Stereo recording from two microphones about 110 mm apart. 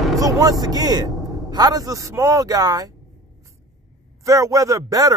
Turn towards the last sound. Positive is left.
turn(degrees=-35)  # may be behind; listen again after turning